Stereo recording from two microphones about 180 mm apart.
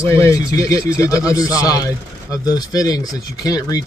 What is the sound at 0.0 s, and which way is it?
Speech, 15° left (ahead or behind).